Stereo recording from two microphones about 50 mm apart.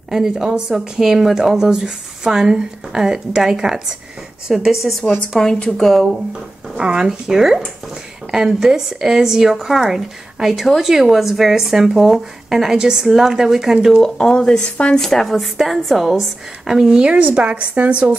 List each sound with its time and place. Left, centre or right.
0.4 s speech: centre
5.4 s speech: centre
6.8 s speech: centre
14.0 s speech: centre
14.6 s speech: left
15.0 s speech: centre; by 18.0 s right